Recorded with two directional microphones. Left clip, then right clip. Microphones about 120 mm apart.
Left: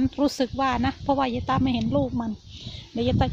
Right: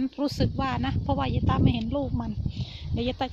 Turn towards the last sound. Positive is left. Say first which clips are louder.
# left 4 dB
turn(degrees=-20)  # may be behind; listen again after turning